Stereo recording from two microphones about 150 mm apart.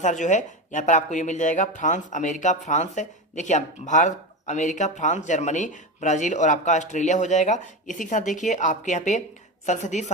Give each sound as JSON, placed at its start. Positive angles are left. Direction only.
{"t": 0.0, "sound": "a woman's voice", "side_deg": 55}